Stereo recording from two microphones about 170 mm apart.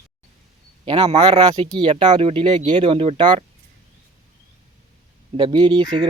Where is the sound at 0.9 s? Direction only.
30° right (ahead or behind).